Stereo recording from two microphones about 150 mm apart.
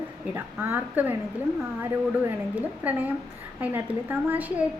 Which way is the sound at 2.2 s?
10° right (ahead or behind).